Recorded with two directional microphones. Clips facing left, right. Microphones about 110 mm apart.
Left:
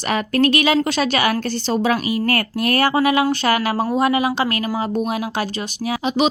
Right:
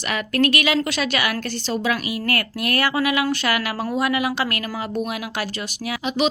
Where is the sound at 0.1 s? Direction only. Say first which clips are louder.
Left 4 dB; 30° left (ahead or behind).